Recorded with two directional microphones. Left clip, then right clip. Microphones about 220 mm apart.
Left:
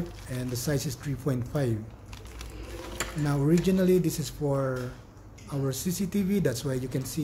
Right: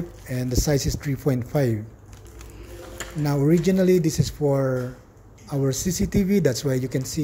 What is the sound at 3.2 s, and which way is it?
Speech, 25° right (ahead or behind).